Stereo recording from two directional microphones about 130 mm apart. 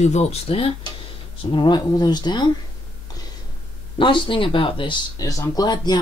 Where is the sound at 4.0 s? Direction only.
40° left (ahead or behind).